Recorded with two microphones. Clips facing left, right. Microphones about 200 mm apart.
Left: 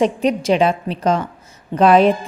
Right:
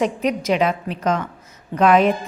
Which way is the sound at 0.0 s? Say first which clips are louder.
Left 4 dB; 30° left (ahead or behind).